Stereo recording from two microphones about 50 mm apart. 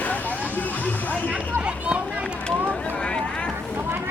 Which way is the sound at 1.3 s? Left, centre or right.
Right.